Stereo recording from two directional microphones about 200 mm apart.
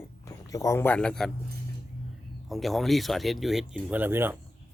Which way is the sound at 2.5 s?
Centre (ahead or behind).